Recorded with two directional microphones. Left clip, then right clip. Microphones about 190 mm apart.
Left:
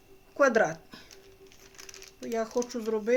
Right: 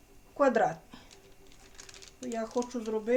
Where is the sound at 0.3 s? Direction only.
40° left (ahead or behind).